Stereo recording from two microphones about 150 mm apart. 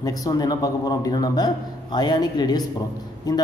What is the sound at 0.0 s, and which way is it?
A man's voice, 25° left (ahead or behind).